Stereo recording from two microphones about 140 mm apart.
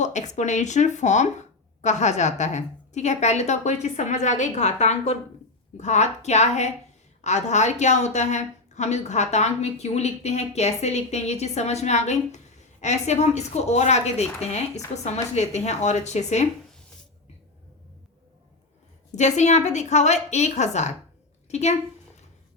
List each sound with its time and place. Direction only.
0.0 s a woman's voice: 55° left (ahead or behind)
19.1 s a woman's voice: 55° left (ahead or behind)